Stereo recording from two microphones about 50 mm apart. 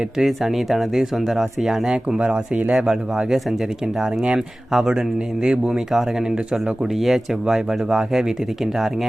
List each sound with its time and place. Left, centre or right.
0.2 s speech: centre
6.8 s speech: centre